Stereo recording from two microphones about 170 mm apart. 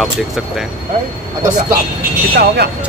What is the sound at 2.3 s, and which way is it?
Speech, 70° right (ahead or behind).